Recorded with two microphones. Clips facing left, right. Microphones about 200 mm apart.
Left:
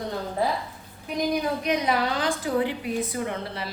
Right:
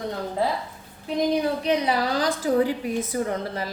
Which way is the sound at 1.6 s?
30° right (ahead or behind).